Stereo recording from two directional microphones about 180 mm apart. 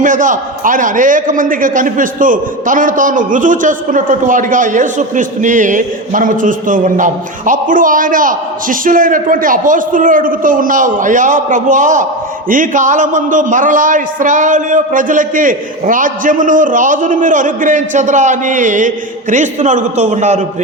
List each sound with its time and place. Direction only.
0.0 s a man's voice: 45° right (ahead or behind)